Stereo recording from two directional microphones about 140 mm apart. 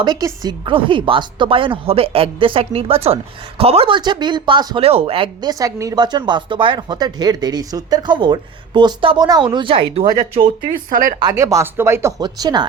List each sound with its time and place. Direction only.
0.0 s speech: 30° right (ahead or behind)
10.7 s speech: 80° right
11.2 s speech: 25° right (ahead or behind)
12.2 s speech: 30° right (ahead or behind)